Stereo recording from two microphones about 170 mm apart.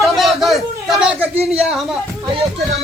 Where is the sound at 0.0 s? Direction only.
Centre (ahead or behind).